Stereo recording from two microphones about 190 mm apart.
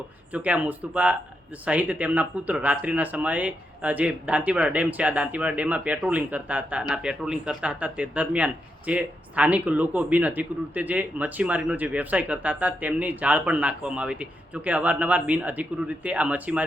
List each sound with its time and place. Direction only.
0.3 s speech: 5° right (ahead or behind)